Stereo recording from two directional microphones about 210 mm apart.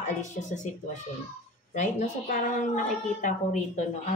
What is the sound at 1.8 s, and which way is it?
A woman's voice, 40° left (ahead or behind).